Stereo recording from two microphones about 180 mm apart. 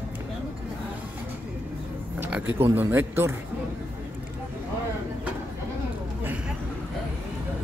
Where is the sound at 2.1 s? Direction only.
10° right (ahead or behind).